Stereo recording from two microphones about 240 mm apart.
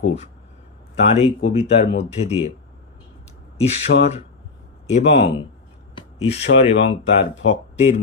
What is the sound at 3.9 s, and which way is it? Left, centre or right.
Speech, left.